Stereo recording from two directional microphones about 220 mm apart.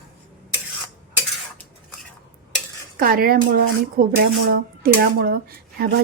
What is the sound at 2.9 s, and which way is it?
Speech, 40° right (ahead or behind).